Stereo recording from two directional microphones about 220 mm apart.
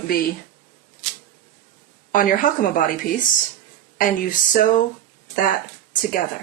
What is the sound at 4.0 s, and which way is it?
Speech, 40° left (ahead or behind).